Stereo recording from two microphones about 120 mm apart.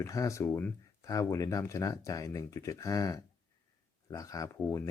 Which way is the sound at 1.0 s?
30° left (ahead or behind).